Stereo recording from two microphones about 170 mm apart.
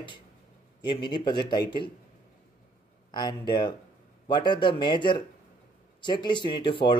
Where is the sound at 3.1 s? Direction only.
25° left (ahead or behind).